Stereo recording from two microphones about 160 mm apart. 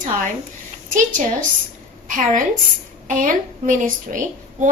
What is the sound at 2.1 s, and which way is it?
A woman's voice, 55° right (ahead or behind).